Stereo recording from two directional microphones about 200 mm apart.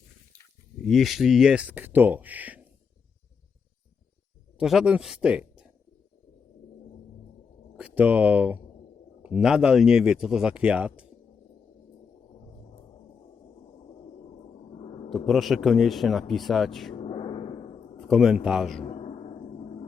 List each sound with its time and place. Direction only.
0.8 s speech: centre (ahead or behind)
4.5 s speech: 5° right (ahead or behind)
7.8 s speech: 5° right (ahead or behind)
15.1 s speech: centre (ahead or behind)
16.9 s gong: 25° left (ahead or behind)
18.1 s speech: centre (ahead or behind)
18.8 s a sound: 30° left (ahead or behind)